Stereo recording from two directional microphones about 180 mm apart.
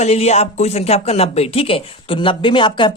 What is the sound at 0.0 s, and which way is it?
Speech, 35° left (ahead or behind).